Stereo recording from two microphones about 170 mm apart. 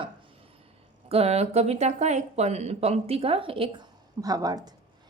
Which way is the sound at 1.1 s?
35° right (ahead or behind).